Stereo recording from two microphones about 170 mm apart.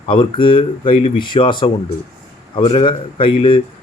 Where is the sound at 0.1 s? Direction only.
30° left (ahead or behind).